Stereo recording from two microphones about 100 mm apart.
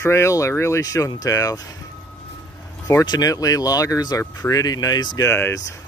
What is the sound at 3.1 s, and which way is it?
Speech, 40° left (ahead or behind).